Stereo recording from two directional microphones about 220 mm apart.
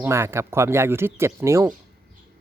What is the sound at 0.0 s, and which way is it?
Speech, 10° right (ahead or behind).